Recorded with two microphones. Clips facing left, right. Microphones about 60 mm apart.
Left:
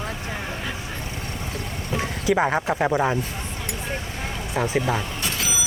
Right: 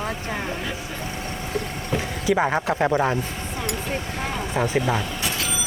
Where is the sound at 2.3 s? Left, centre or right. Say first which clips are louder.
Even; centre.